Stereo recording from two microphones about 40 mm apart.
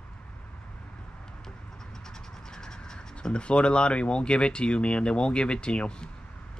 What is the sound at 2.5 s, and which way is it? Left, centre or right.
Speech, centre.